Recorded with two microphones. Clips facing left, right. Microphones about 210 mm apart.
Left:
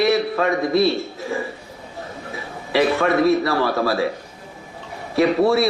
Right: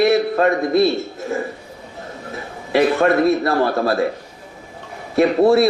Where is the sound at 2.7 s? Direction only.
50° right (ahead or behind).